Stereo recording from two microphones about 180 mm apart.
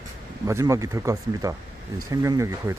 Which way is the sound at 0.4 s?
15° right (ahead or behind).